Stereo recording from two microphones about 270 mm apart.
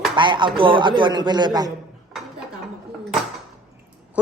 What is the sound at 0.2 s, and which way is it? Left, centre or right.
Speech, centre.